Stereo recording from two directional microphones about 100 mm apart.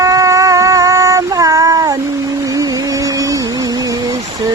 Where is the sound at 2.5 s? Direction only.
40° right (ahead or behind).